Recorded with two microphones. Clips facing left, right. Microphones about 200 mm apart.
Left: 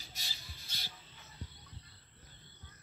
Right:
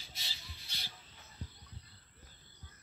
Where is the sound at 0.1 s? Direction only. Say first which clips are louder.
Right 2 dB; 45° left (ahead or behind).